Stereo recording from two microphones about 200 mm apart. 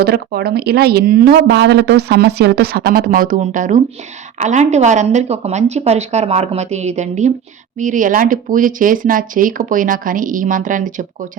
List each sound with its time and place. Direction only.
0.0 s speech: 50° right (ahead or behind)